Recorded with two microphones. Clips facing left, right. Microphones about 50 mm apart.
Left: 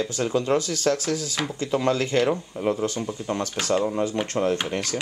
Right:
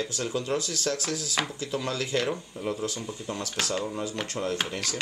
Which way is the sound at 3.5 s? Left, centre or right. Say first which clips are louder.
Left 7 dB; centre.